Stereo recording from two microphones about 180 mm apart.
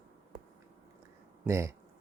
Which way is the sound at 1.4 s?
15° right (ahead or behind).